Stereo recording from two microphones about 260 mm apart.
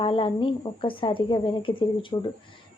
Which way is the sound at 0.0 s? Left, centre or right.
Centre.